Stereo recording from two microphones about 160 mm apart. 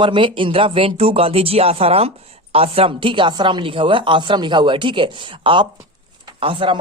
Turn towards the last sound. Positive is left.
turn(degrees=-35)  # may be behind; listen again after turning